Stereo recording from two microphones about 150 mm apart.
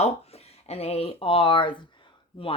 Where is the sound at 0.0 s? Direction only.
45° left (ahead or behind).